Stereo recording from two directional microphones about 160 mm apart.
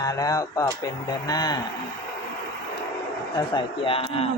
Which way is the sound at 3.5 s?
35° left (ahead or behind).